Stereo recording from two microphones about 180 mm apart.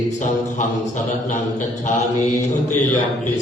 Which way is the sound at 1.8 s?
40° left (ahead or behind).